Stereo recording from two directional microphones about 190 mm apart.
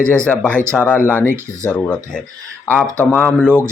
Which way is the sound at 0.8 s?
10° left (ahead or behind).